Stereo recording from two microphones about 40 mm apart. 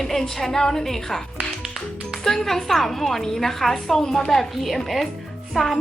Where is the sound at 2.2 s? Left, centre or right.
Centre.